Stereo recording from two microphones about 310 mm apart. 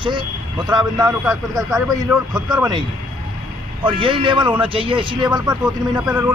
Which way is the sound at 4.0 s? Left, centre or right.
Centre.